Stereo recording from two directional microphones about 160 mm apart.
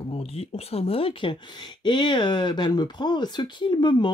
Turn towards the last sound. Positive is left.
turn(degrees=25)  # may be behind; listen again after turning